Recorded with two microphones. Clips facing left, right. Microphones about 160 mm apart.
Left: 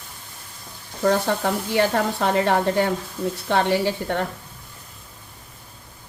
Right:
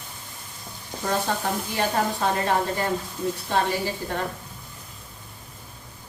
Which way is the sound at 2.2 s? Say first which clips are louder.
Left 6 dB; 75° left (ahead or behind).